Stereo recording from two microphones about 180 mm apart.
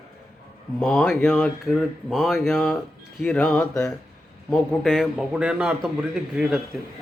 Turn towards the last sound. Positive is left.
turn(degrees=0)  # may be behind; listen again after turning